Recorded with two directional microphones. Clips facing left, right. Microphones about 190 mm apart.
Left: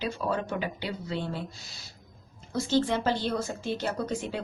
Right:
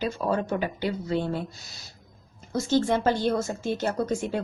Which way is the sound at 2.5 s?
45° right (ahead or behind).